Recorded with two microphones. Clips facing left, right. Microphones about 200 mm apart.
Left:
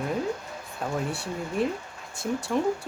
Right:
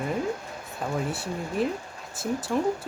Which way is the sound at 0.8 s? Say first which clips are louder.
Right 1 dB; centre (ahead or behind).